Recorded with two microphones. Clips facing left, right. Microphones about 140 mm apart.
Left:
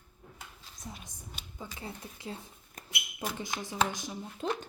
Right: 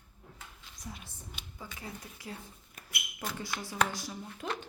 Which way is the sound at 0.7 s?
15° left (ahead or behind).